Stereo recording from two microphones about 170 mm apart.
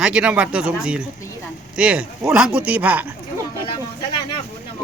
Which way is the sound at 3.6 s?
30° left (ahead or behind).